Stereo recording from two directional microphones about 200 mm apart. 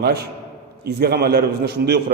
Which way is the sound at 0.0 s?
55° right (ahead or behind).